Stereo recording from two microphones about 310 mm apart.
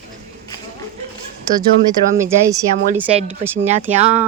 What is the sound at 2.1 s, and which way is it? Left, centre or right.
Speech, centre.